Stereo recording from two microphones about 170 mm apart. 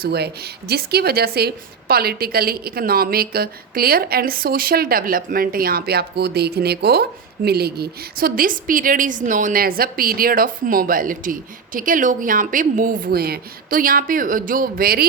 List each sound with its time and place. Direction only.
0.0 s speech: 70° right (ahead or behind)